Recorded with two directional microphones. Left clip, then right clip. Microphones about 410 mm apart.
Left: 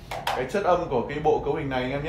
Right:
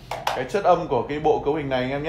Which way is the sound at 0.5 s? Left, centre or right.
Right.